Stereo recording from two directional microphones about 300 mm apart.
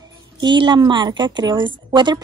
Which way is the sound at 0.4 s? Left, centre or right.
Centre.